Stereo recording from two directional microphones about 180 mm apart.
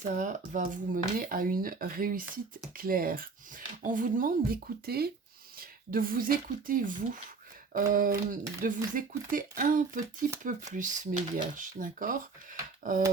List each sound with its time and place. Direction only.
0.0 s speech: 45° right (ahead or behind)